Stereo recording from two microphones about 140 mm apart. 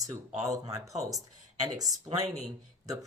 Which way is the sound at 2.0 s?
25° right (ahead or behind).